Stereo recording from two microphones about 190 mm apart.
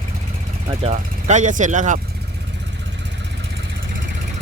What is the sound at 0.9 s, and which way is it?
Speech, 40° right (ahead or behind).